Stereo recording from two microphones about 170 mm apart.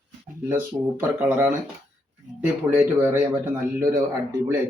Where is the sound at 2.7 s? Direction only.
10° right (ahead or behind).